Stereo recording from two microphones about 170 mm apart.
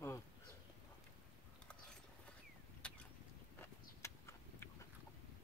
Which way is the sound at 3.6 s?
15° left (ahead or behind).